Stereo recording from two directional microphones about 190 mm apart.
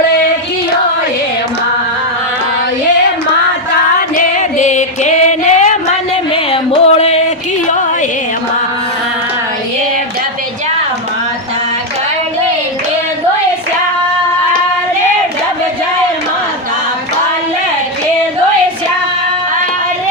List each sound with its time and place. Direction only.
4.1 s music: 40° left (ahead or behind)